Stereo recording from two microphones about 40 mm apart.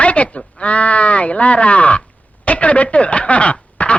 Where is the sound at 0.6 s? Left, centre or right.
Left.